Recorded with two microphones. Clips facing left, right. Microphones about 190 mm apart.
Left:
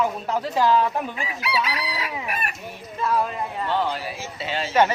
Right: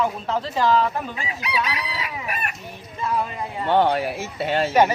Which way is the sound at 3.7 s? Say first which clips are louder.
Right 8 dB; 60° right (ahead or behind).